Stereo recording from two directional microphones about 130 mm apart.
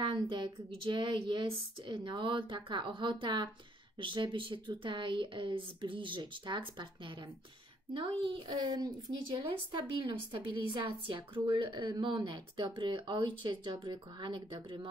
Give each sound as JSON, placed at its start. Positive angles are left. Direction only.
{"t": 0.0, "sound": "speech", "side_deg": -35}
{"t": 7.9, "sound": "speech", "side_deg": -40}